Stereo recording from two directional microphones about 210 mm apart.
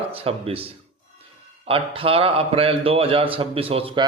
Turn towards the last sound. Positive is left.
turn(degrees=-25)  # may be behind; listen again after turning